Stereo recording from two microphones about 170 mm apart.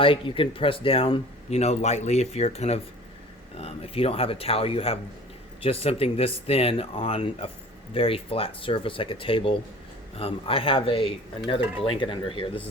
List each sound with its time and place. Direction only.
0.0 s speech: 30° left (ahead or behind)